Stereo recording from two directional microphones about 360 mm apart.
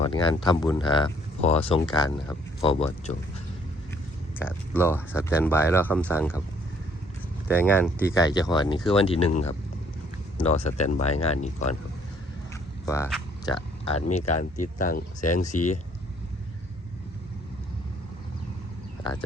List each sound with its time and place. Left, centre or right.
0.1 s speech: centre
4.4 s speech: centre
7.5 s speech: centre
10.3 s speech: centre
12.8 s speech: centre